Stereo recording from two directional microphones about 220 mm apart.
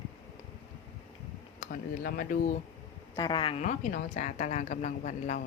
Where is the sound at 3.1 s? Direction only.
20° left (ahead or behind).